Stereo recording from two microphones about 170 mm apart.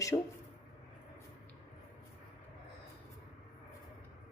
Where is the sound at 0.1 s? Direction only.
30° left (ahead or behind).